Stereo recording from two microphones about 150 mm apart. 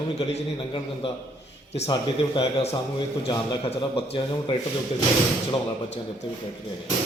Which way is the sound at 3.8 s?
35° left (ahead or behind).